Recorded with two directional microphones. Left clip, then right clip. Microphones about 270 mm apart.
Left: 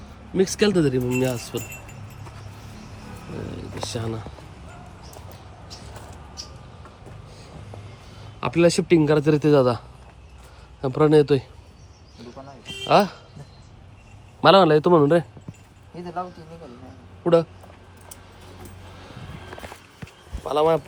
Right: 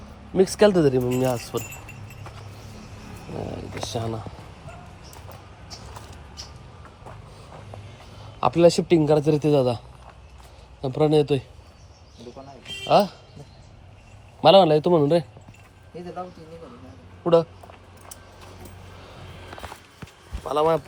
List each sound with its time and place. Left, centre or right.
0.3 s speech: centre
3.5 s speech: centre
8.2 s speech: centre
10.8 s speech: centre
12.8 s speech: centre
14.4 s speech: centre
14.9 s speech: left
17.2 s speech: centre
20.0 s a sound: centre